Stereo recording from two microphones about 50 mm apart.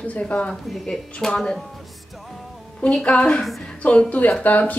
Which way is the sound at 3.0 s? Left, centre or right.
Left.